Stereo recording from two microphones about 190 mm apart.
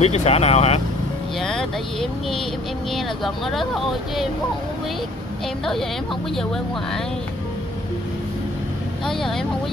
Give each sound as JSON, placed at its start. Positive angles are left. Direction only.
{"t": 0.0, "sound": "speech", "side_deg": 35}
{"t": 1.4, "sound": "speech", "side_deg": 0}
{"t": 6.3, "sound": "speech", "side_deg": 0}
{"t": 9.0, "sound": "speech", "side_deg": 0}